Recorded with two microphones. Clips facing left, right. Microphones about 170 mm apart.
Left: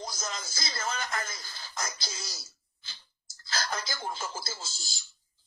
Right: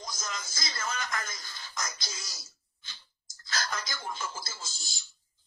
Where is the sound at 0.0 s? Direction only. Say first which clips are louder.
Left 2 dB; 30° left (ahead or behind).